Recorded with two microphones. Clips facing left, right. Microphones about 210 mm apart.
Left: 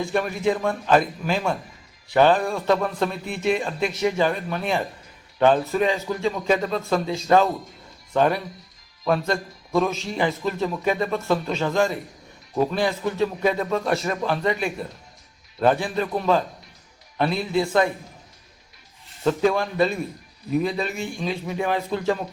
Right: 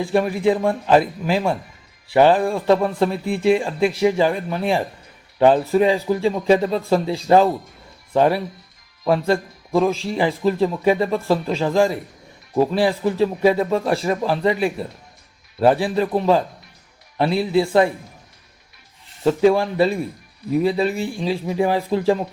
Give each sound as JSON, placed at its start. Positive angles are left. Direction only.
{"t": 0.0, "sound": "speech", "side_deg": -30}
{"t": 19.4, "sound": "speech", "side_deg": -25}